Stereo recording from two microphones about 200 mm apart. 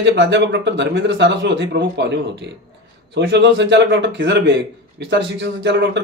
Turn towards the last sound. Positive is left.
turn(degrees=-60)  # may be behind; listen again after turning